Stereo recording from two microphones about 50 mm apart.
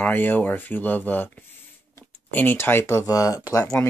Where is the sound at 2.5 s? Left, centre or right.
Left.